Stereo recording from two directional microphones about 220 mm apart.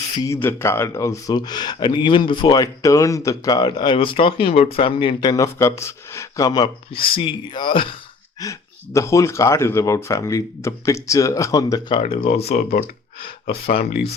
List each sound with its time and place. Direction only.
0.2 s speech: 15° left (ahead or behind)
13.7 s speech: 45° left (ahead or behind)